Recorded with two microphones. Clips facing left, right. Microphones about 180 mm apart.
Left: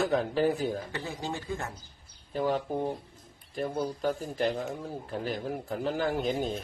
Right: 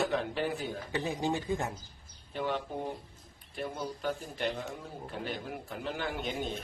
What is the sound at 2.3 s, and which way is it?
Speech, 40° left (ahead or behind).